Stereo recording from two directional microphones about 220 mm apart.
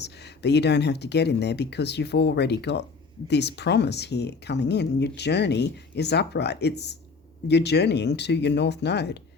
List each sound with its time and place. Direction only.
0.0 s speech: 50° left (ahead or behind)